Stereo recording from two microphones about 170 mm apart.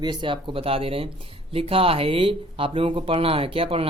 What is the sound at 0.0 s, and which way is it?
Speech, 25° right (ahead or behind).